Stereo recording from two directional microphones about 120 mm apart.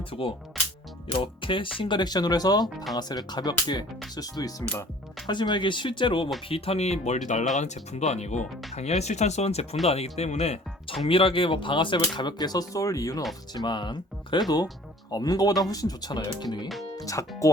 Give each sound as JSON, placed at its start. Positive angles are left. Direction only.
{"t": 0.0, "sound": "speech", "side_deg": 50}
{"t": 6.5, "sound": "speech", "side_deg": 60}